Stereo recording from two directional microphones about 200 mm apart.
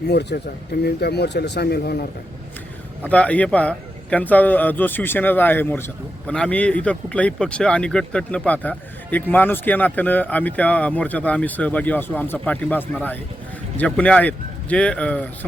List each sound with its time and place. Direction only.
0.1 s speech: 55° left (ahead or behind)
3.0 s a man's voice: 5° left (ahead or behind)